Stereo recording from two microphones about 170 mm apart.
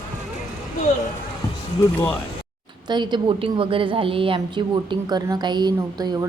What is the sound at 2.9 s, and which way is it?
A woman's voice, 25° right (ahead or behind).